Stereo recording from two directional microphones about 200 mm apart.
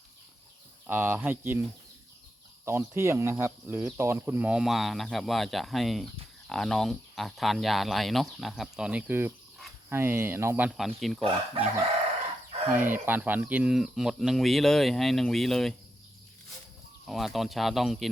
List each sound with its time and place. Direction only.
0.9 s speech: 10° right (ahead or behind)
2.6 s speech: 10° right (ahead or behind)
11.2 s speech: 30° right (ahead or behind)
12.7 s speech: 10° right (ahead or behind)
17.1 s speech: centre (ahead or behind)